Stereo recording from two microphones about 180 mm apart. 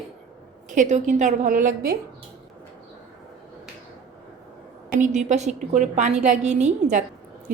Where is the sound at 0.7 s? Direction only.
40° right (ahead or behind).